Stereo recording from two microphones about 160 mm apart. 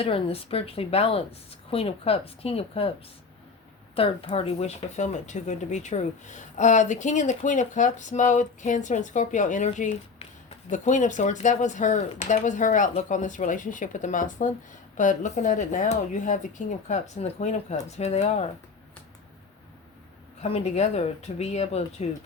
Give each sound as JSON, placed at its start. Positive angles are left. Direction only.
{"t": 0.0, "sound": "a woman's voice", "side_deg": 35}
{"t": 3.9, "sound": "speech", "side_deg": 35}
{"t": 20.4, "sound": "a woman's voice", "side_deg": 40}